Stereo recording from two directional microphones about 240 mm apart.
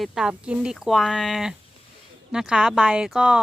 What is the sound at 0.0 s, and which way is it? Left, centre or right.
Speech, centre.